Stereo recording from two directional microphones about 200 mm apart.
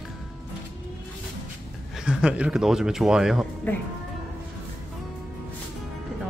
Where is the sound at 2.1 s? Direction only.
5° right (ahead or behind).